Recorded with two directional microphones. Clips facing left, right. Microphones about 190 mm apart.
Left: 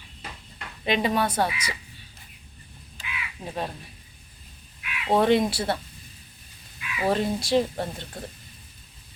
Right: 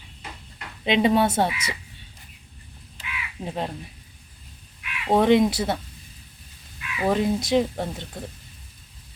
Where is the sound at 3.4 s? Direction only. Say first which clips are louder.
Right 5 dB; 25° right (ahead or behind).